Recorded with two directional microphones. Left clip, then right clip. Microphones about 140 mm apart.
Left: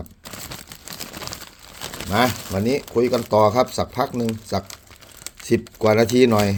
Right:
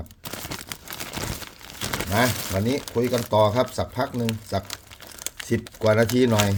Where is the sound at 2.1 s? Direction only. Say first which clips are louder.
Left 4 dB; 55° left (ahead or behind).